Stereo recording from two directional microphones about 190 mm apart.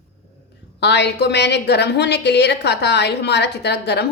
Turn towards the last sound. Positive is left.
turn(degrees=60)  # may be behind; listen again after turning